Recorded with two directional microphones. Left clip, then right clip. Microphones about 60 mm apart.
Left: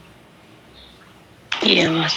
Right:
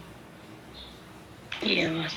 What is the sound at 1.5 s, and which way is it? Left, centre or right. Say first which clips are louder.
Speech: left 10 dB; left.